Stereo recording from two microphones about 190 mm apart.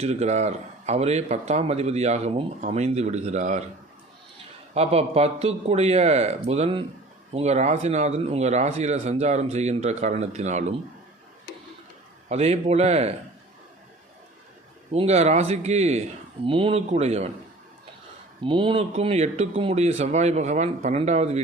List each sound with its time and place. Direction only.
0.0 s a man's voice: 35° right (ahead or behind)
4.7 s a man's voice: 30° right (ahead or behind)
12.3 s a man's voice: 35° right (ahead or behind)
14.9 s a man's voice: 35° right (ahead or behind)
18.4 s a man's voice: 25° right (ahead or behind)